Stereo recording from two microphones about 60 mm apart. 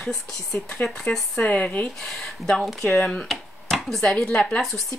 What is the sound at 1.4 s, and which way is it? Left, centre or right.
Speech, left.